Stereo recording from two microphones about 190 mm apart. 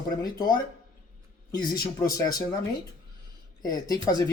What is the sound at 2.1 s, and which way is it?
Speech, 20° left (ahead or behind).